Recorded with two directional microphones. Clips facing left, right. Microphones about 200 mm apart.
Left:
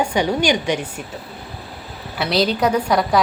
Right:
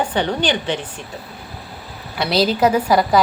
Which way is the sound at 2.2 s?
Centre (ahead or behind).